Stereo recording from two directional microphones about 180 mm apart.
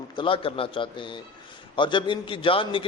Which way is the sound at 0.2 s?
30° left (ahead or behind).